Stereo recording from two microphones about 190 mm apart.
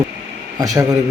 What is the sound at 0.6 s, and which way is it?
Speech, 20° right (ahead or behind).